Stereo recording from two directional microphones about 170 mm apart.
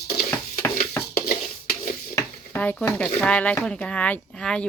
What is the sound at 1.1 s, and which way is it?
Stir, 65° left (ahead or behind).